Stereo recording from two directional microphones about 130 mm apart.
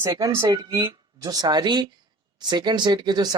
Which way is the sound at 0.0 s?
25° right (ahead or behind).